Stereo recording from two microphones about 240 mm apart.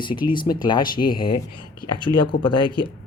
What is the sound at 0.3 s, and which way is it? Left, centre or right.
Speech, centre.